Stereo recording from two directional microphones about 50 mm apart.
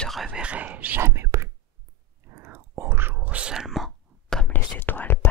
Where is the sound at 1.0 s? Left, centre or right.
Right.